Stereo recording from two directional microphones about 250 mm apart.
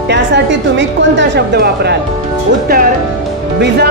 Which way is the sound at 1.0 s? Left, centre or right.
Right.